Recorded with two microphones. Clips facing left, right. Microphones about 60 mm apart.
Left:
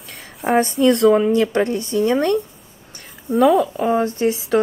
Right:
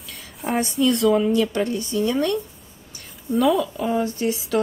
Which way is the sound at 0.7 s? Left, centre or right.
Left.